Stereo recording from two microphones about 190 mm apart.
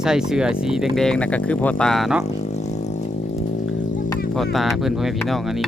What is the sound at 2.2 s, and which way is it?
Vehicle, 35° left (ahead or behind).